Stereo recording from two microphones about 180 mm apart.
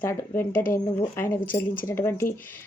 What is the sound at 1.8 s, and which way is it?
Speech, 15° left (ahead or behind).